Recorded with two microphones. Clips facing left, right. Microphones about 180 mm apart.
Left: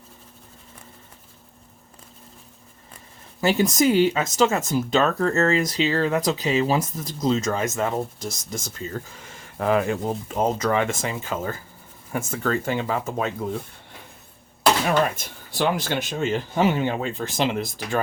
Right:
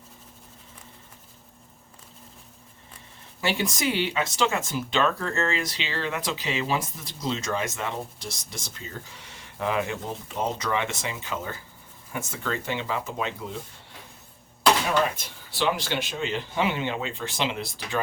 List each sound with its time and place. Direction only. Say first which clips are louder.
3.4 s speech: left 7 dB; 40° left (ahead or behind)
14.8 s speech: left 3 dB; 50° left (ahead or behind)